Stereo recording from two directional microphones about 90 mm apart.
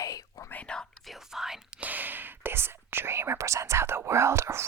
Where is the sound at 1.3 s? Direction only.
5° right (ahead or behind).